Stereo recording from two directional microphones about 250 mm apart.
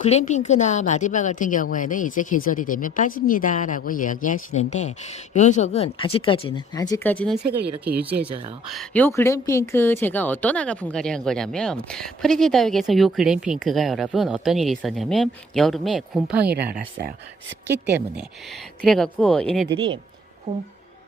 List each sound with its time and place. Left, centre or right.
0.0 s a woman's voice: left; by 16.4 s centre
16.4 s speech: right
18.8 s speech: centre
19.6 s speech: centre